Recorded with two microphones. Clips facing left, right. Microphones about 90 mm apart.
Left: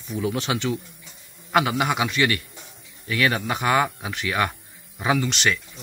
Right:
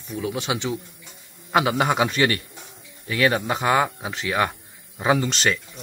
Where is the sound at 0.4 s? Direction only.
20° right (ahead or behind).